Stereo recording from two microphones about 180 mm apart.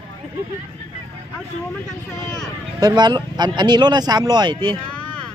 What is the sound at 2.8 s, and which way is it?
Speech, 25° right (ahead or behind).